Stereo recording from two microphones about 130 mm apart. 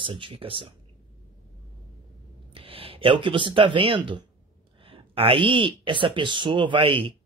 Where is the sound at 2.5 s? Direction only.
45° right (ahead or behind).